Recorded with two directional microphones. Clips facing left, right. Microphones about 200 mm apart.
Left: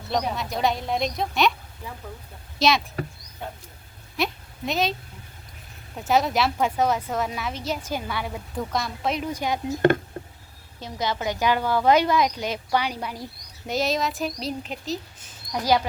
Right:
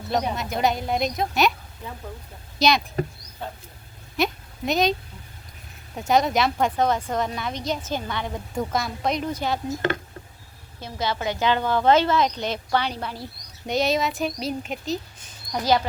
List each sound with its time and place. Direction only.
0.1 s speech: centre (ahead or behind)
2.6 s speech: centre (ahead or behind)
4.2 s a woman's voice: centre (ahead or behind)
6.0 s a woman's voice: centre (ahead or behind)
10.8 s a woman's voice: 15° left (ahead or behind)
13.7 s speech: centre (ahead or behind)